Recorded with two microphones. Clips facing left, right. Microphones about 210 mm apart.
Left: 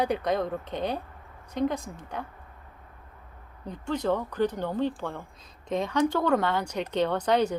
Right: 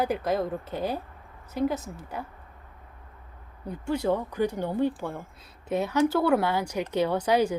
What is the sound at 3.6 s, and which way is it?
Speech, 10° right (ahead or behind).